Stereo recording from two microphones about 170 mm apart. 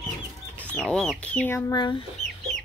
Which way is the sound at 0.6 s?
5° left (ahead or behind).